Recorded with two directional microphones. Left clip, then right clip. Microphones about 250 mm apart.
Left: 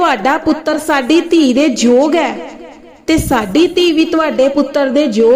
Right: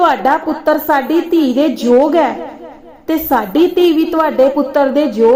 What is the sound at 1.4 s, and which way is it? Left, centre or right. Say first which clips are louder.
Speech: left 2 dB; left.